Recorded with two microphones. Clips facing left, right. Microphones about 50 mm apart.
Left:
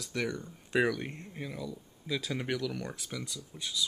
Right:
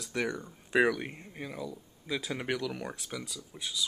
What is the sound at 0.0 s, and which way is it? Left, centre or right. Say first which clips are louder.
Speech: right 1 dB; centre.